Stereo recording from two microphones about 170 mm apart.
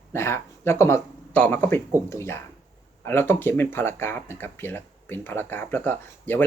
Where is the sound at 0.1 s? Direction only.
15° left (ahead or behind).